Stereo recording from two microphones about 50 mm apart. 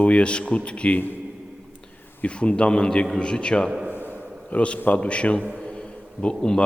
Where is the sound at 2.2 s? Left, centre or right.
Left.